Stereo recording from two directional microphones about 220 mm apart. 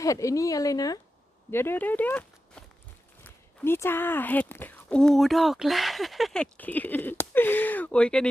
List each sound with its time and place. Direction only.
0.0 s speech: 15° left (ahead or behind)